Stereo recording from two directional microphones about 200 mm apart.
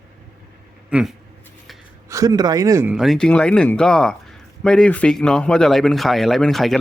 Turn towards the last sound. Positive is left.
turn(degrees=0)  # may be behind; listen again after turning